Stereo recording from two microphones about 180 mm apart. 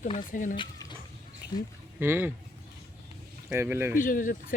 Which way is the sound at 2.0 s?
10° right (ahead or behind).